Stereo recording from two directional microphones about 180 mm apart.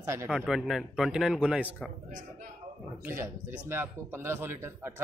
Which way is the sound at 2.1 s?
45° right (ahead or behind).